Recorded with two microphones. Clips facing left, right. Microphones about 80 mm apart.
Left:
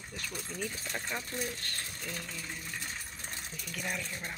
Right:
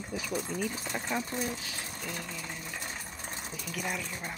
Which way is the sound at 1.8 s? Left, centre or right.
Centre.